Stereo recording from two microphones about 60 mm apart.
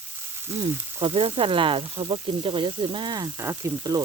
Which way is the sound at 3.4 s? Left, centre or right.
Right.